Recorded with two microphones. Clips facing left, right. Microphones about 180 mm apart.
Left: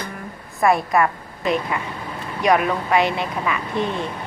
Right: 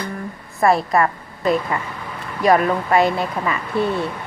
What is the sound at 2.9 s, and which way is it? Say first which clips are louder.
Speech: right 3 dB; 45° right (ahead or behind).